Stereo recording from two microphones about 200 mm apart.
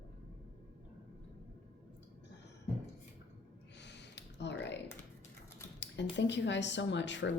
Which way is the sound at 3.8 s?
60° left (ahead or behind).